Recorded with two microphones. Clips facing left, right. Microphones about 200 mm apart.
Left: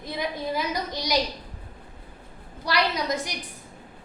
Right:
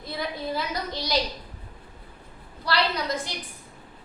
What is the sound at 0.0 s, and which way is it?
A woman's voice, 15° left (ahead or behind).